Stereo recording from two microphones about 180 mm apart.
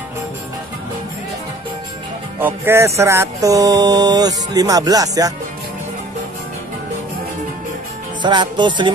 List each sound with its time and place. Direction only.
2.4 s music: 15° right (ahead or behind)
8.2 s music: 25° right (ahead or behind)